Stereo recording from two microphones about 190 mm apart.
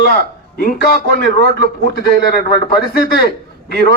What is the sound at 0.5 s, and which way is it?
A man's voice, 50° left (ahead or behind).